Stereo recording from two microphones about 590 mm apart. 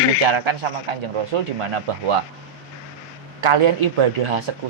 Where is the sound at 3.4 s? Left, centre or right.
Right.